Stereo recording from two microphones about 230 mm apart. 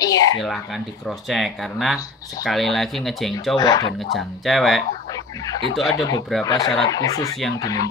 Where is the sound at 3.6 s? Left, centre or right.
Centre.